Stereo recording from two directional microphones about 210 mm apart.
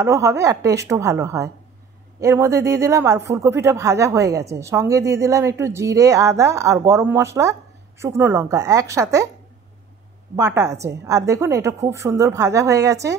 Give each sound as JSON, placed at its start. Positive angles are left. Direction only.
{"t": 0.0, "sound": "speech", "side_deg": -15}
{"t": 10.3, "sound": "speech", "side_deg": -15}